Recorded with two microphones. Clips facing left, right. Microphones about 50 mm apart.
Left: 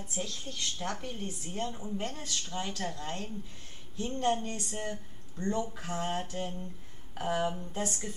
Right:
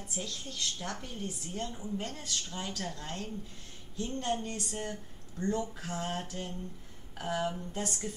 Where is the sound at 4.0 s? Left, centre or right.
Left.